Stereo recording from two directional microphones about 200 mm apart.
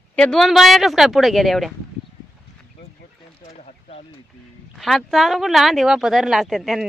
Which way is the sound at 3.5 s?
35° left (ahead or behind).